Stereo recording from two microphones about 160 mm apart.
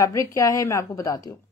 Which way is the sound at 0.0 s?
20° left (ahead or behind).